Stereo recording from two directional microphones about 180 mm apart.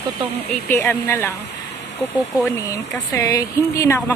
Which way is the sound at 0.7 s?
15° left (ahead or behind).